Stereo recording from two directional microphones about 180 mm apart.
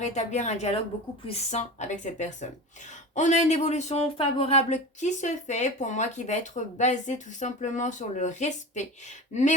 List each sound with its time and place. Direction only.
0.0 s speech: 40° left (ahead or behind)